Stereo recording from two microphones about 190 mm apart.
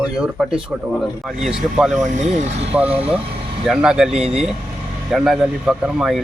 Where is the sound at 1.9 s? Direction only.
40° right (ahead or behind).